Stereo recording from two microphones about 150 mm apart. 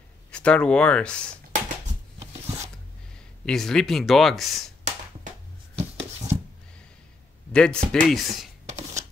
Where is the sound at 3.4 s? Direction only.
5° left (ahead or behind).